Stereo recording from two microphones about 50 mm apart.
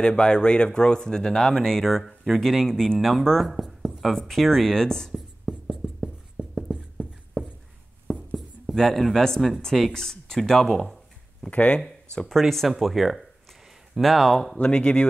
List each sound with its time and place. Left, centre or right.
0.0 s speech: centre
4.2 s speech: centre
5.1 s writing: centre
8.4 s a sound: centre
9.8 s speech: centre
11.5 s speech: left
12.3 s speech: centre
14.6 s speech: left